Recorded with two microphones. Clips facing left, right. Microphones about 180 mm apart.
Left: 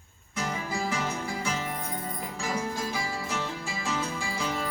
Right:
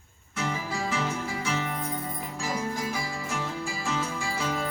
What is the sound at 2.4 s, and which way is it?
Music, centre (ahead or behind).